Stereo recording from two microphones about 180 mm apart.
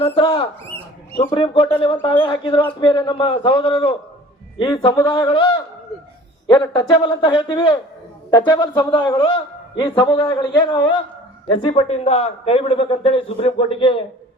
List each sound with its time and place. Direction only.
0.0 s a man's voice: 30° left (ahead or behind)
11.7 s a man's voice: 35° left (ahead or behind)